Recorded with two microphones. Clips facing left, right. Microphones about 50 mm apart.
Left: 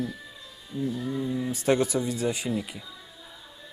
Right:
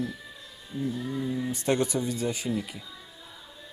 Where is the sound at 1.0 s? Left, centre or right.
Centre.